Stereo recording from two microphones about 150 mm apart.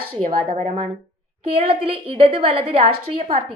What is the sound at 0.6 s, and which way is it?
Speech, 60° right (ahead or behind).